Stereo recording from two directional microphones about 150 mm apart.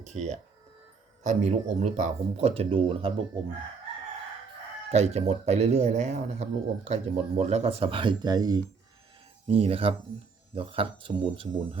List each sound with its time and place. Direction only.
0.0 s speech: 50° right (ahead or behind); by 3.1 s 35° right (ahead or behind)
4.9 s speech: 45° right (ahead or behind); by 8.6 s 25° right (ahead or behind)
9.5 s speech: 40° right (ahead or behind)